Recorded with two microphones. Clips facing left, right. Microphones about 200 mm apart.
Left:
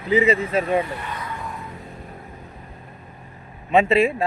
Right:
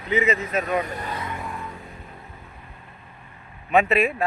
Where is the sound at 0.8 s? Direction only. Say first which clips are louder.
Left 1 dB; 40° right (ahead or behind).